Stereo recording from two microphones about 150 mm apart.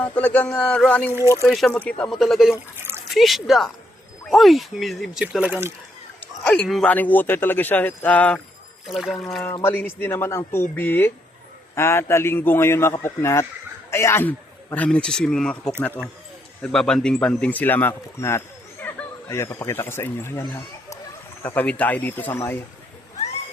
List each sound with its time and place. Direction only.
0.0 s speech: 10° left (ahead or behind); by 5.7 s 15° right (ahead or behind)
6.1 s speech: 10° left (ahead or behind)
8.9 s speech: centre (ahead or behind)
9.6 s speech: 15° left (ahead or behind)
16.7 s speech: 5° left (ahead or behind)
20.5 s a sound: 20° left (ahead or behind)
21.4 s speech: 10° left (ahead or behind)